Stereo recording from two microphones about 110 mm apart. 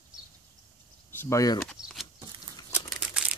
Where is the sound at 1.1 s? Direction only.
20° left (ahead or behind).